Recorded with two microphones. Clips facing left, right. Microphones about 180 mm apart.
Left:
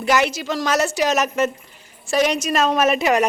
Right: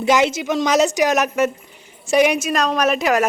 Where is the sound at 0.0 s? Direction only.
20° right (ahead or behind).